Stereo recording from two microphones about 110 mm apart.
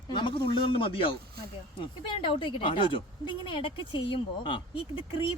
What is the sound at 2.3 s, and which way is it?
A woman's voice, 50° left (ahead or behind).